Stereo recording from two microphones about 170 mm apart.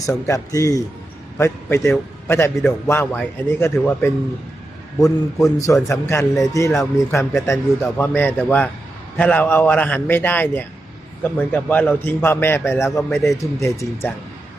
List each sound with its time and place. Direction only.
0.0 s a man's voice: 20° left (ahead or behind)
5.5 s a man's voice: 20° left (ahead or behind)